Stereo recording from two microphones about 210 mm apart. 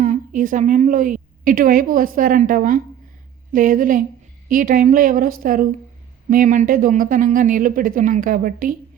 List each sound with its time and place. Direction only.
0.0 s a woman's voice: 40° right (ahead or behind)